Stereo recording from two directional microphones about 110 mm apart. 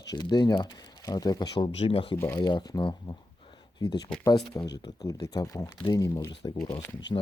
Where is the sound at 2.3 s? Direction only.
35° left (ahead or behind).